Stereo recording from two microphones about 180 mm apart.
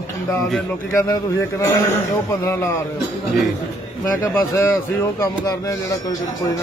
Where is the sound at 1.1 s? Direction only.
15° left (ahead or behind).